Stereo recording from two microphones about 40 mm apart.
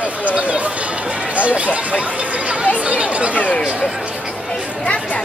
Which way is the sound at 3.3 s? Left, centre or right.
Left.